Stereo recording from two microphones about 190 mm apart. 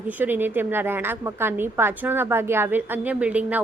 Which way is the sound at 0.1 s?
10° right (ahead or behind).